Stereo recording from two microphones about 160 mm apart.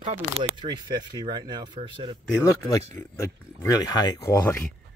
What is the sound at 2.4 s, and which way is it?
Speech, 20° left (ahead or behind).